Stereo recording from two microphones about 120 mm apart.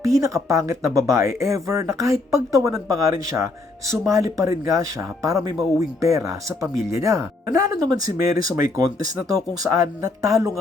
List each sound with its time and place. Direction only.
0.0 s speech: 25° right (ahead or behind)